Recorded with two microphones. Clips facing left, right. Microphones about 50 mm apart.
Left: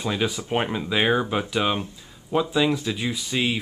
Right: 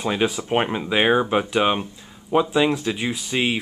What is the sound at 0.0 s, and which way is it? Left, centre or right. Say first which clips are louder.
Speech: right 3 dB; centre.